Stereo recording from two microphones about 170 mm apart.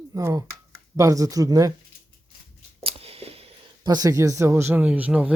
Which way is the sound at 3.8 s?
20° right (ahead or behind).